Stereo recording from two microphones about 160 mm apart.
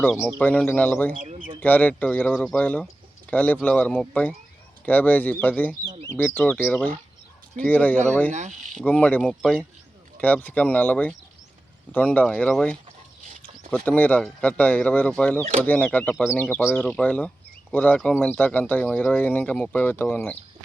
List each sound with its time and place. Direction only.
0.3 s speech: 10° left (ahead or behind)
5.8 s speech: 30° right (ahead or behind)
6.1 s speech: 10° left (ahead or behind)
8.3 s speech: 45° right (ahead or behind)
8.8 s speech: 10° left (ahead or behind)
10.2 s speech: 10° left (ahead or behind)